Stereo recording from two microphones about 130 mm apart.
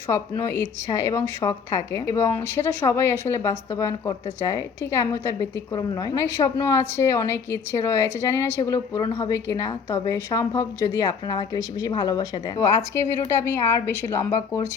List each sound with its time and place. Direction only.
0.1 s a woman's voice: 20° left (ahead or behind)